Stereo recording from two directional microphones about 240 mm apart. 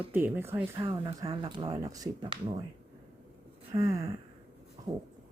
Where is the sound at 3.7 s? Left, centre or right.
Centre.